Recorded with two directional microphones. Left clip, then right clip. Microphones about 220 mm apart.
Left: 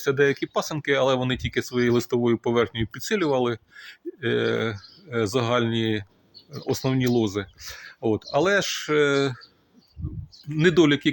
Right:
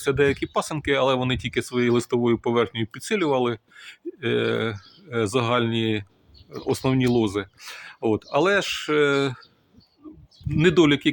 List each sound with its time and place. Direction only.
0.0 s speech: 10° right (ahead or behind)
10.5 s speech: 10° right (ahead or behind)